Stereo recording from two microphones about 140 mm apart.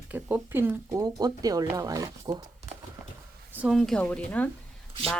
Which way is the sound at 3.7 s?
Centre (ahead or behind).